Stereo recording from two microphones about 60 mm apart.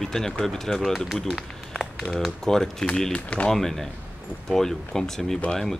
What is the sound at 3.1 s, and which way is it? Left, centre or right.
Speech, left.